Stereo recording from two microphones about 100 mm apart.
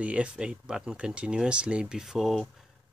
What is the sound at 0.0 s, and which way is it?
Speech, 10° right (ahead or behind).